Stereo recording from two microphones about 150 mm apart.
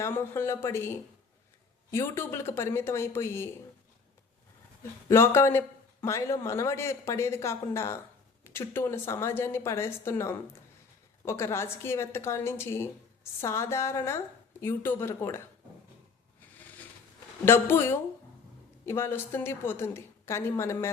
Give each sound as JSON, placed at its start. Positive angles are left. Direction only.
{"t": 0.0, "sound": "a man's voice", "side_deg": 15}
{"t": 4.8, "sound": "a man's voice", "side_deg": 15}
{"t": 17.4, "sound": "a man's voice", "side_deg": 15}